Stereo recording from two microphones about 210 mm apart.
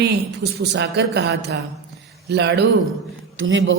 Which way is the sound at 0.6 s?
55° right (ahead or behind).